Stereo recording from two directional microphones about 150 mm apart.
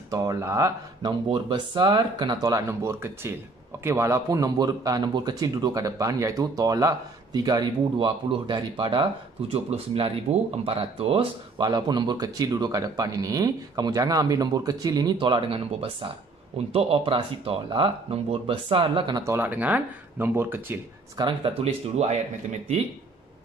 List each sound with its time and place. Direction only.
0.1 s speech: 20° right (ahead or behind)
1.3 s speech: 30° right (ahead or behind)
19.2 s speech: 15° right (ahead or behind)
21.2 s speech: 30° right (ahead or behind)